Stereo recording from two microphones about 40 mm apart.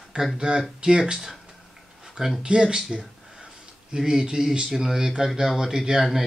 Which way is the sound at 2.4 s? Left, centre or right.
Right.